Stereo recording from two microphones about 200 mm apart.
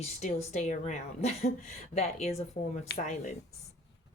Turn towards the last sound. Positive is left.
turn(degrees=35)  # may be behind; listen again after turning